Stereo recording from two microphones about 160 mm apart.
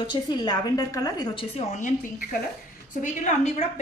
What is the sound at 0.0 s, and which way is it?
A woman's voice, 30° left (ahead or behind).